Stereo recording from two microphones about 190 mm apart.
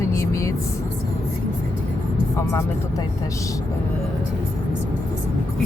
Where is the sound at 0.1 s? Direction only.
15° left (ahead or behind).